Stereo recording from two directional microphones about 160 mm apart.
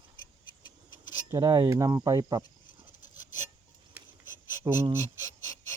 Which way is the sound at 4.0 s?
10° right (ahead or behind).